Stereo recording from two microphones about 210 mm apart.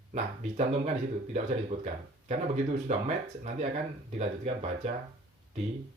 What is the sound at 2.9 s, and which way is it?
Speech, 30° right (ahead or behind).